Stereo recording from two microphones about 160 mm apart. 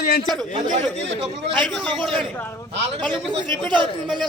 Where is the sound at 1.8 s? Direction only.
Centre (ahead or behind).